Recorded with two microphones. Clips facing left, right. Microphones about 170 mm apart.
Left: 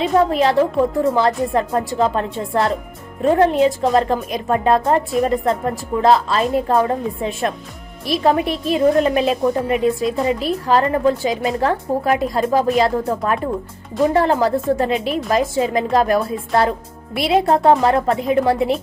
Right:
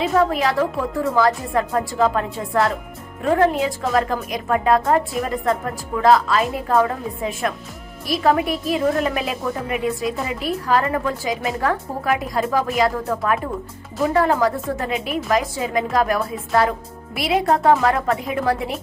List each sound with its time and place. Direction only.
0.0 s speech: 25° left (ahead or behind)